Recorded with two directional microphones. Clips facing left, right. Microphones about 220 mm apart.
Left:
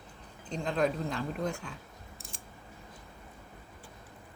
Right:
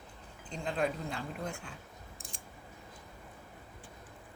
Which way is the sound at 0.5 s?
40° left (ahead or behind).